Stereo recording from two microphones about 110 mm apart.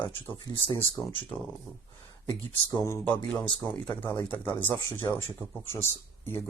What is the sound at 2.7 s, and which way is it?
Speech, 30° left (ahead or behind).